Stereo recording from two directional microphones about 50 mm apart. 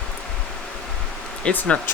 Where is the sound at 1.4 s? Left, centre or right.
Left.